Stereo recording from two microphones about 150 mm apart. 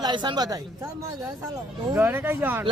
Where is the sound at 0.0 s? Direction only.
30° right (ahead or behind).